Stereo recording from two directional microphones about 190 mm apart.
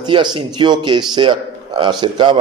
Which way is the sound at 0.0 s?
25° right (ahead or behind).